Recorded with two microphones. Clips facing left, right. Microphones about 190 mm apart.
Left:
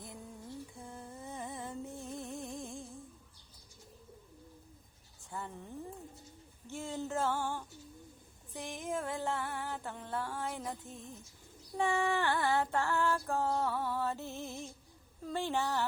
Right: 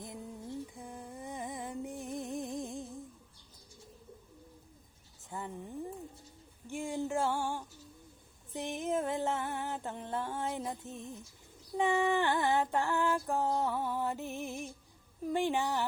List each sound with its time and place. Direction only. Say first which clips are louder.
0.0 s music: right 4 dB; 20° right (ahead or behind)
5.3 s a sound: right 2 dB; 20° right (ahead or behind)
6.7 s female singing: right 4 dB; 15° right (ahead or behind)
8.5 s music: right 5 dB; 20° right (ahead or behind)
11.8 s female singing: right 3 dB; 20° right (ahead or behind)
15.2 s speech: right 3 dB; 15° right (ahead or behind)